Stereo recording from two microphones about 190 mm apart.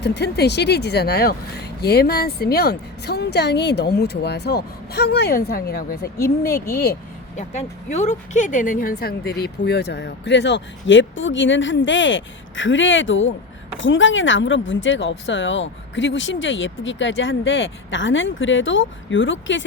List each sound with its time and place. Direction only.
0.0 s a woman's voice: 60° left (ahead or behind)
7.3 s speech: 40° left (ahead or behind); by 19.6 s 80° left